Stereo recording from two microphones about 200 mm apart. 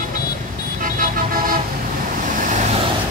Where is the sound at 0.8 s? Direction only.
45° right (ahead or behind).